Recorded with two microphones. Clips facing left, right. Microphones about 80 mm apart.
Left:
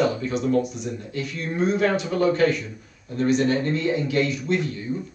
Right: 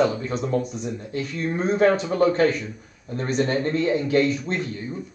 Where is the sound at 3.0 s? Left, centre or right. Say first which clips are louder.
Left 3 dB; right.